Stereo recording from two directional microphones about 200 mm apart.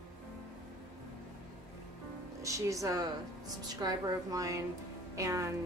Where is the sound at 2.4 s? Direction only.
15° right (ahead or behind).